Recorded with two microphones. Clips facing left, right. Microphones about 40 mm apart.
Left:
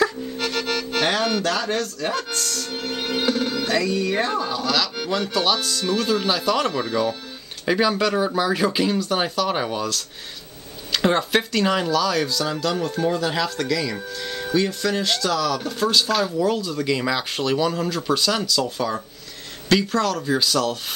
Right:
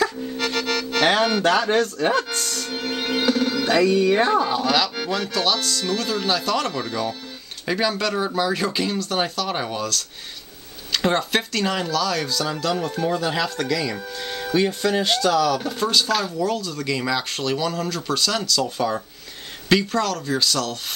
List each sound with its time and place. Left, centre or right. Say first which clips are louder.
0.0 s accordion: left 1 dB; centre
1.0 s music: right 4 dB; right
1.4 s speech: right 5 dB; right
2.7 s music: right 3 dB; centre
3.2 s speech: right 2 dB; centre
3.6 s music: right 6 dB; right
4.4 s speech: right 3 dB; right
5.1 s speech: left 2 dB; centre
18.8 s speech: right 1 dB; centre